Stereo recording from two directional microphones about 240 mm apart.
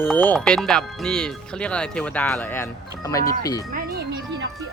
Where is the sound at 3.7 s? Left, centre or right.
Right.